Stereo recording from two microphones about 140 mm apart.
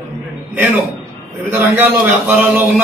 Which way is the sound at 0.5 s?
10° right (ahead or behind).